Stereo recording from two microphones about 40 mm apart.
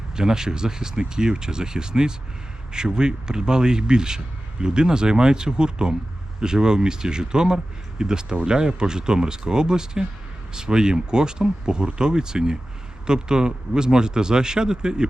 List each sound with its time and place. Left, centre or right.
0.2 s speech: centre